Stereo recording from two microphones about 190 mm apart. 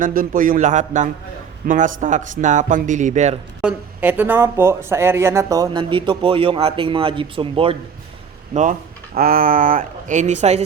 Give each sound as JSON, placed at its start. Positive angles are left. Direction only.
{"t": 0.0, "sound": "speech", "side_deg": -45}
{"t": 3.6, "sound": "speech", "side_deg": -10}
{"t": 9.1, "sound": "speech", "side_deg": -50}